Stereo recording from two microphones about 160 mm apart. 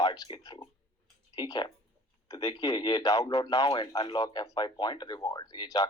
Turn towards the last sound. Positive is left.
turn(degrees=25)  # may be behind; listen again after turning